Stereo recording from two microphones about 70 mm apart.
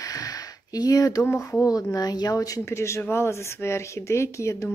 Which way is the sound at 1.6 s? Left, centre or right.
Left.